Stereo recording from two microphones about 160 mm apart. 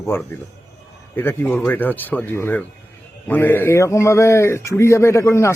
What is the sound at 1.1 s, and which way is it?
A man's voice, 15° left (ahead or behind).